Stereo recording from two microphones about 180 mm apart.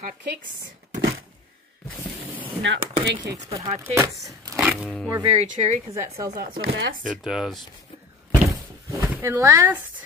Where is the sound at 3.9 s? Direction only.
15° right (ahead or behind).